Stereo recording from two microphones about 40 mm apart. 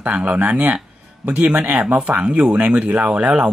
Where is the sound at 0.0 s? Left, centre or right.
Right.